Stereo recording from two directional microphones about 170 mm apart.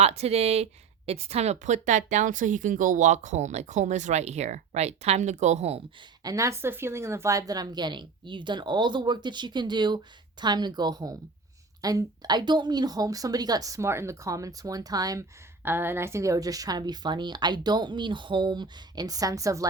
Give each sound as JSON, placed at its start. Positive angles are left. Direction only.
{"t": 0.0, "sound": "speech", "side_deg": -40}
{"t": 6.2, "sound": "speech", "side_deg": -20}